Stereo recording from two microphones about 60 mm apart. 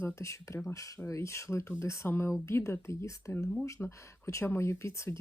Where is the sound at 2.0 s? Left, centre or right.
Left.